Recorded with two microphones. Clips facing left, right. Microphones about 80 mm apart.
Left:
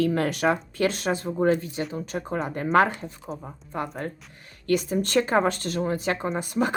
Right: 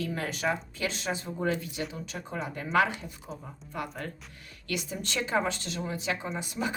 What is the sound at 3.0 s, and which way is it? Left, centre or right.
Speech, left.